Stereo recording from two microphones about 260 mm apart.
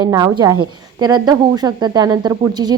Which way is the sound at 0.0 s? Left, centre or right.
Centre.